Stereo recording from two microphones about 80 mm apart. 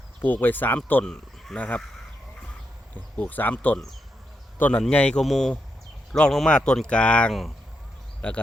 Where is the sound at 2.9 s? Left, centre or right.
Left.